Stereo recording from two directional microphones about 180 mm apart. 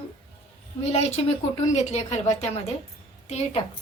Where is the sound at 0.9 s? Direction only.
35° left (ahead or behind).